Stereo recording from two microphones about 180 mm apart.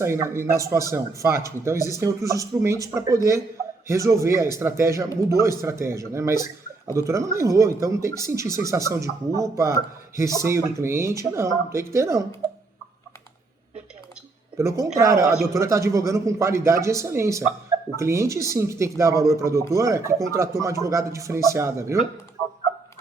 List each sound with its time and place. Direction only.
0.0 s speech: 15° right (ahead or behind)
14.6 s speech: 15° right (ahead or behind)